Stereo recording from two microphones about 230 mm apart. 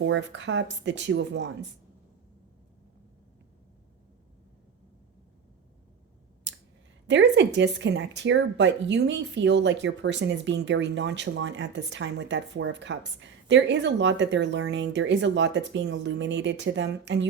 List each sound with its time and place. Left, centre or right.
0.0 s speech: right
6.5 s clicking: right
7.1 s speech: right